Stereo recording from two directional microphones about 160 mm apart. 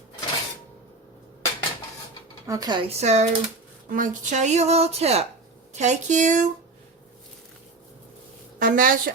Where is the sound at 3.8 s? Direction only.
55° right (ahead or behind).